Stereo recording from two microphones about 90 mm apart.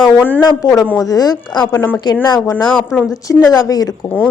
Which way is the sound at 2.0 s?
55° left (ahead or behind).